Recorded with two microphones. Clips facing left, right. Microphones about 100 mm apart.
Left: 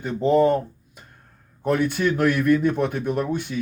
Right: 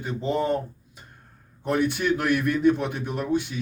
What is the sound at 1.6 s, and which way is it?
A man's voice, 50° left (ahead or behind).